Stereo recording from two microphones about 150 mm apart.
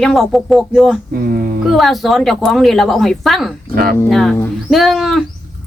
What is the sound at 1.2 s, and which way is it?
Mantra, 90° right.